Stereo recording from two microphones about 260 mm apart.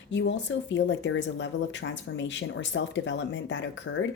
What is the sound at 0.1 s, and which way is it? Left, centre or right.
Speech, left.